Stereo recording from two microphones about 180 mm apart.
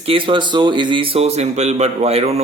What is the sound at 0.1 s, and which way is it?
Speech, 30° right (ahead or behind).